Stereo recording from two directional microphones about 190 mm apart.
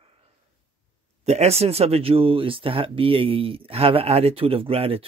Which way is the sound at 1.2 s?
35° right (ahead or behind).